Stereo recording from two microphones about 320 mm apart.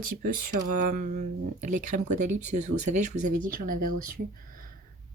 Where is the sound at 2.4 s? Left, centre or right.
Right.